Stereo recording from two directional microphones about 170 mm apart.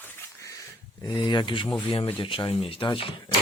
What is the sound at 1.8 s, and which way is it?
Speech, 35° left (ahead or behind).